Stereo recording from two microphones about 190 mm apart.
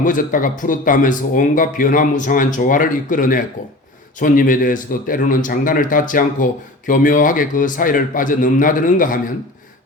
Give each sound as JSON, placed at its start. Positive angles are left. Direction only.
{"t": 0.0, "sound": "speech", "side_deg": 45}